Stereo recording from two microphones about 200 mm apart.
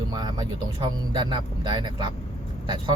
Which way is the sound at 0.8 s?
20° right (ahead or behind).